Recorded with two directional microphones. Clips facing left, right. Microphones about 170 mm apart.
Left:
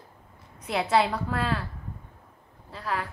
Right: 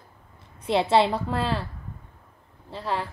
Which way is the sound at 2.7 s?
30° right (ahead or behind).